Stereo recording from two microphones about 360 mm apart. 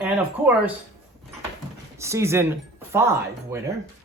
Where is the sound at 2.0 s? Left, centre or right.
Centre.